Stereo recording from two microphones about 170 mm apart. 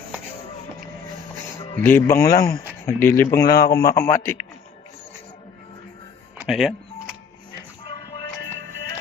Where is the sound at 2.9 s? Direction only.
15° left (ahead or behind).